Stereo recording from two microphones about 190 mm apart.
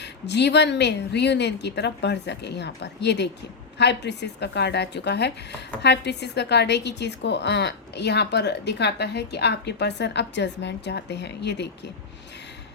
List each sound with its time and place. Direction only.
0.0 s speech: 65° left (ahead or behind)